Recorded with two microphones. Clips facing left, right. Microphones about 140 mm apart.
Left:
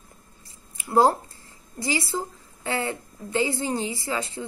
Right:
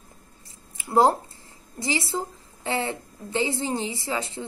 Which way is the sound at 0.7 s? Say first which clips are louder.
Even; 25° right (ahead or behind).